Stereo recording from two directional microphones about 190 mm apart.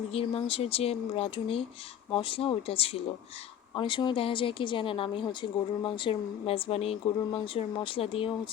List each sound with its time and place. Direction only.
0.1 s a woman's voice: 30° left (ahead or behind)